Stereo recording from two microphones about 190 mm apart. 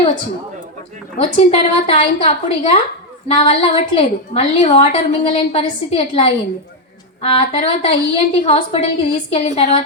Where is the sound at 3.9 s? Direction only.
30° left (ahead or behind).